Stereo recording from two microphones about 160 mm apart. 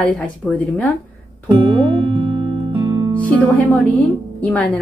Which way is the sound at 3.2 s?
10° left (ahead or behind).